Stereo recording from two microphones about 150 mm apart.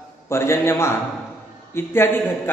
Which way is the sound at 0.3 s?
15° left (ahead or behind).